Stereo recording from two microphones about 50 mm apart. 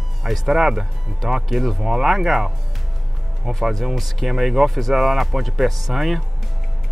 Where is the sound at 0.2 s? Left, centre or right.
Centre.